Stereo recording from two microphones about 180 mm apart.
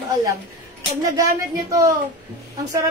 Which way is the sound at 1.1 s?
20° right (ahead or behind).